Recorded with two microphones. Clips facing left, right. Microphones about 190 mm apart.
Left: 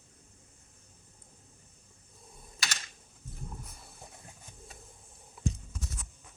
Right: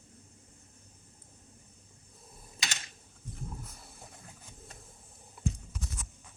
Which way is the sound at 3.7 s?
Centre (ahead or behind).